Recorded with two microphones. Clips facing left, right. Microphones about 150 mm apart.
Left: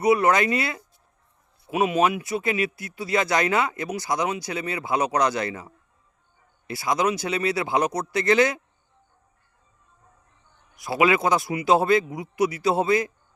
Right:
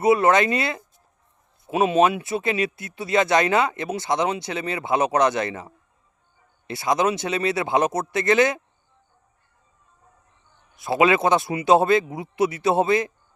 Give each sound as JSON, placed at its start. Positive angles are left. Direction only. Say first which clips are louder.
{"t": 0.0, "sound": "speech", "louder": "right 2 dB", "side_deg": -25}
{"t": 10.8, "sound": "speech", "louder": "right 2 dB", "side_deg": -25}